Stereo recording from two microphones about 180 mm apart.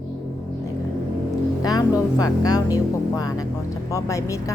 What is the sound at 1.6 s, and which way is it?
A woman's voice, 20° left (ahead or behind).